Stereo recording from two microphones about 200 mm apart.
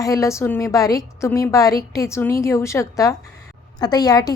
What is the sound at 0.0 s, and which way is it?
A woman's voice, 15° left (ahead or behind).